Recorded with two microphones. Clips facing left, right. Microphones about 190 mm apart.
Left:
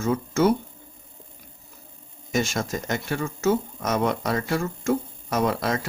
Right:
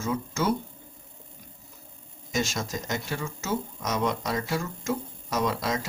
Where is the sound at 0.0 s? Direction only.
55° left (ahead or behind).